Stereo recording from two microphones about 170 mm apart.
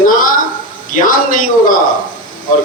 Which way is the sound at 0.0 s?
55° left (ahead or behind).